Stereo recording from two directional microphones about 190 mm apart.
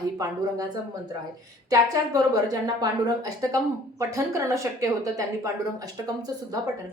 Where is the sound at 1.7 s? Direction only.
20° right (ahead or behind).